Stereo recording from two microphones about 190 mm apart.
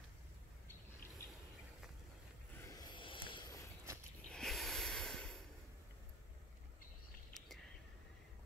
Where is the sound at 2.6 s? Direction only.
20° left (ahead or behind).